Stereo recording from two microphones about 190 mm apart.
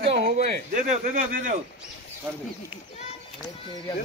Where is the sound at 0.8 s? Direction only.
40° right (ahead or behind).